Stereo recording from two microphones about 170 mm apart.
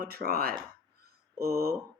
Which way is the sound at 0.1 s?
65° right (ahead or behind).